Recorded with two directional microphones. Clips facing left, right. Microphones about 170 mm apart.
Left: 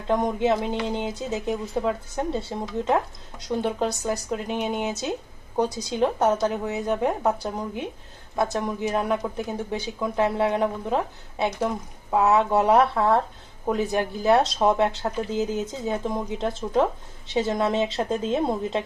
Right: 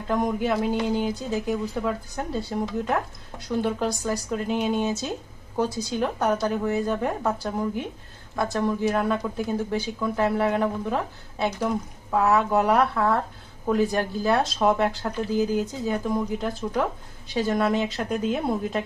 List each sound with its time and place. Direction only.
0.1 s speech: 25° left (ahead or behind)